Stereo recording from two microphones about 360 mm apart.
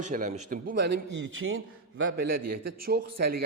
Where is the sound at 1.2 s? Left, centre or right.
Right.